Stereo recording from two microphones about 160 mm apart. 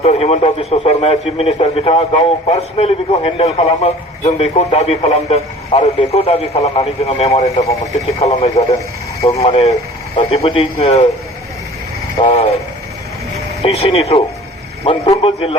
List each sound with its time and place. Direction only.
0.0 s a man's voice: 40° left (ahead or behind)
12.2 s a man's voice: 40° left (ahead or behind)
13.6 s a man's voice: 40° left (ahead or behind)
15.2 s a man's voice: 35° left (ahead or behind)